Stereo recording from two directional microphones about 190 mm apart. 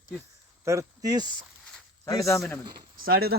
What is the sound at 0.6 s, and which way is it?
Speech, 15° right (ahead or behind).